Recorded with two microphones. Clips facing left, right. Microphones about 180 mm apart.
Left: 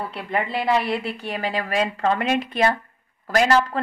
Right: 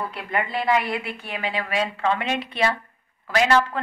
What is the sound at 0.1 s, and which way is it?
A woman's voice, 35° left (ahead or behind).